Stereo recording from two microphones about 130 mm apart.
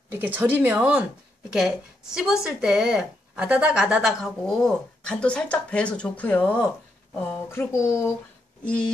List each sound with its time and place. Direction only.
0.1 s speech: 15° right (ahead or behind); by 8.1 s 20° left (ahead or behind)